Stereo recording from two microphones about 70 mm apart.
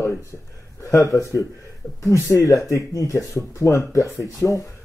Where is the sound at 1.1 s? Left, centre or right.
Left.